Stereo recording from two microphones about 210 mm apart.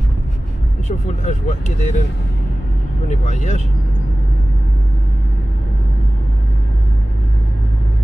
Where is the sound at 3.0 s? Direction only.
35° left (ahead or behind).